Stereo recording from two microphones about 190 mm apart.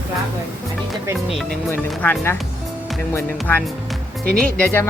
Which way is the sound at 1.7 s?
10° left (ahead or behind).